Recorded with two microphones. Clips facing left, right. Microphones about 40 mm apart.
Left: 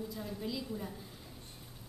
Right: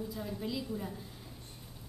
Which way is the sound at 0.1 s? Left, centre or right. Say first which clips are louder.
Right 2 dB; centre.